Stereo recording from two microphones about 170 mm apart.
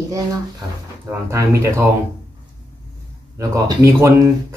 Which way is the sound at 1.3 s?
15° right (ahead or behind).